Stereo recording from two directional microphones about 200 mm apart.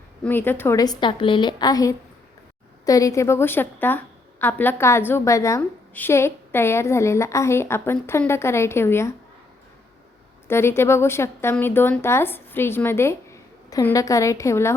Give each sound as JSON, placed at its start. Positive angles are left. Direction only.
{"t": 0.3, "sound": "a woman's voice", "side_deg": 10}
{"t": 10.5, "sound": "a woman's voice", "side_deg": 10}